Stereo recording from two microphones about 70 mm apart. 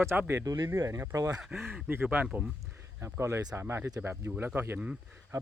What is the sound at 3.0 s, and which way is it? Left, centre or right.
Speech, right.